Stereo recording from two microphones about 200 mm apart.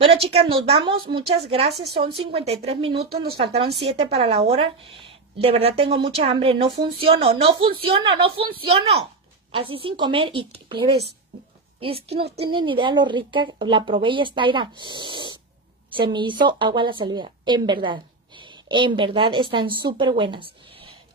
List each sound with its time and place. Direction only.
0.0 s a woman's voice: 30° right (ahead or behind)